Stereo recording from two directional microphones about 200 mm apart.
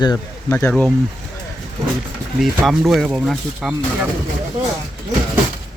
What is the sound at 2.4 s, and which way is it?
Speech, centre (ahead or behind).